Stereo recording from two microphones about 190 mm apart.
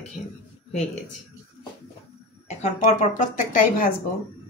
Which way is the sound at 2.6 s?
40° left (ahead or behind).